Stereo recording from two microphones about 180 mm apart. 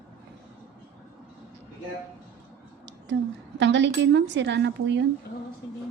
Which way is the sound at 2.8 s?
85° right.